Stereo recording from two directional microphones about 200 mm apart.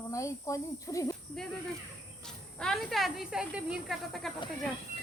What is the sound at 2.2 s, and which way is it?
Speech, 5° left (ahead or behind).